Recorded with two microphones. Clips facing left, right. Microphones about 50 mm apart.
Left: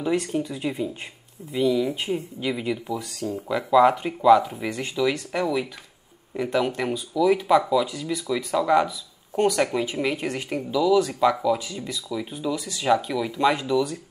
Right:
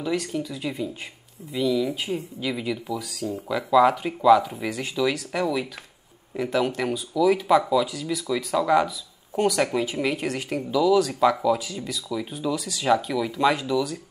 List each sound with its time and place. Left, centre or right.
0.0 s speech: centre
3.0 s speech: centre
12.5 s speech: centre
12.8 s speech: centre